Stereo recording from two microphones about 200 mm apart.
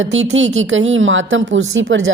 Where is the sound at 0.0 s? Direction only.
75° right (ahead or behind).